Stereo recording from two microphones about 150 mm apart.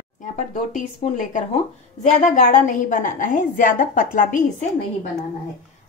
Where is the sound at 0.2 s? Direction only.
55° left (ahead or behind).